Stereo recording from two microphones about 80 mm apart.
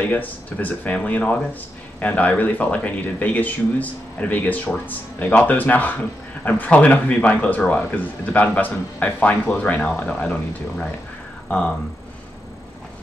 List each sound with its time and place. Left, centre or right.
0.0 s speech: left